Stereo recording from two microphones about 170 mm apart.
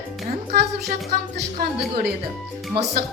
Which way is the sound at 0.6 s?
75° right (ahead or behind).